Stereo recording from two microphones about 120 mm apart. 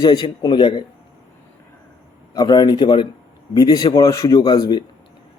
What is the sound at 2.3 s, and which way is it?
A man's voice, 30° left (ahead or behind).